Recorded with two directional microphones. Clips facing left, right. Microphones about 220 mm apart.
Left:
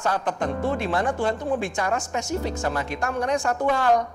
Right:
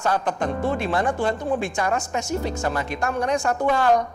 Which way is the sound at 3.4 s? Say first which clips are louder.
Right 2 dB; 30° right (ahead or behind).